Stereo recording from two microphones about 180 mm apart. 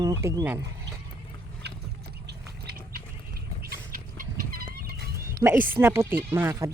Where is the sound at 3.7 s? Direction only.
50° right (ahead or behind).